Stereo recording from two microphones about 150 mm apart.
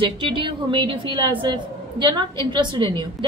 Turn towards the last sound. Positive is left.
turn(degrees=-30)  # may be behind; listen again after turning